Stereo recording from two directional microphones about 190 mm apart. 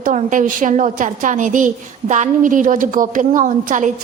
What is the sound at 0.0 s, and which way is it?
A woman's voice, 40° right (ahead or behind).